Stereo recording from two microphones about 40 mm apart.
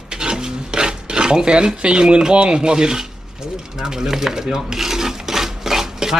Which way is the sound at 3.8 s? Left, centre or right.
Centre.